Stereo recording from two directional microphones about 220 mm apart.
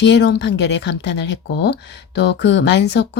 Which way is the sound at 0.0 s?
50° left (ahead or behind).